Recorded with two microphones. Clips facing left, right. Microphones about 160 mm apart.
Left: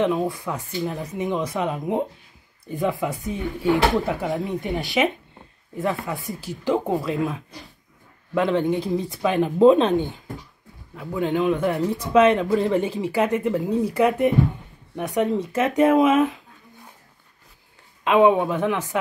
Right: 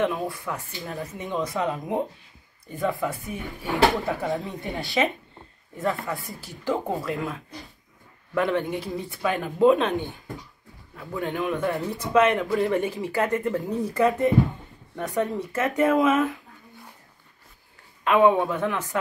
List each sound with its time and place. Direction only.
0.0 s speech: 20° left (ahead or behind)
8.4 s speech: 20° left (ahead or behind)
18.0 s speech: 20° left (ahead or behind)